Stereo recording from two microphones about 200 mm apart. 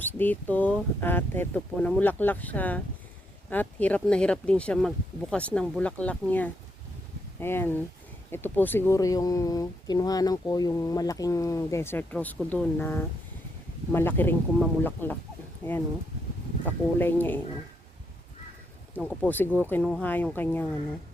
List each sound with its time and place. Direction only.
0.0 s speech: 10° left (ahead or behind)
18.9 s speech: 5° left (ahead or behind)